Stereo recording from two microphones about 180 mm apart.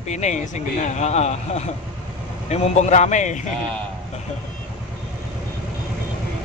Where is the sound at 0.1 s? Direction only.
40° left (ahead or behind).